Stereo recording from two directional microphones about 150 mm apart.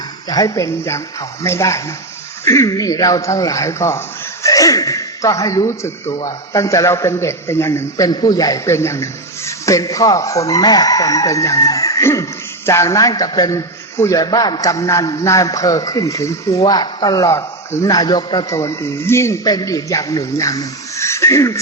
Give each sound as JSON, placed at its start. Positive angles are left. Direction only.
{"t": 0.3, "sound": "a man's voice", "side_deg": 25}